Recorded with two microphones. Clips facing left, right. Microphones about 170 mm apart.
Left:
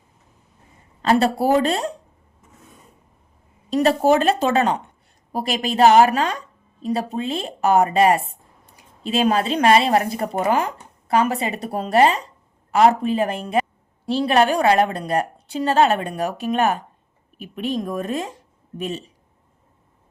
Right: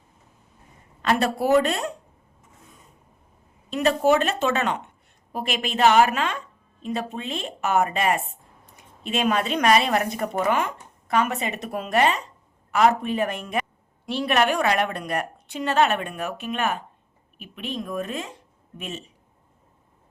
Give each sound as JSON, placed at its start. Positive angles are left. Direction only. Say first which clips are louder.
{"t": 1.0, "sound": "a woman's voice", "louder": "left 4 dB", "side_deg": 30}
{"t": 3.7, "sound": "a woman's voice", "louder": "left 3 dB", "side_deg": 35}